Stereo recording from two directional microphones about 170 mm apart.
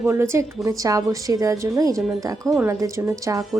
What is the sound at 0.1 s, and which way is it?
A woman's voice, 15° right (ahead or behind).